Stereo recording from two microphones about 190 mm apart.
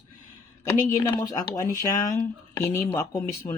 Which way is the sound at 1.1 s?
20° left (ahead or behind).